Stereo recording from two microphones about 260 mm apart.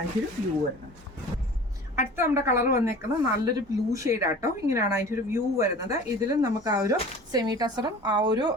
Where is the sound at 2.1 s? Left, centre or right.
Centre.